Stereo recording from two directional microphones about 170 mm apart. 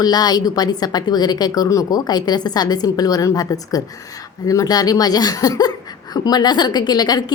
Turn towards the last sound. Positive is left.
turn(degrees=25)  # may be behind; listen again after turning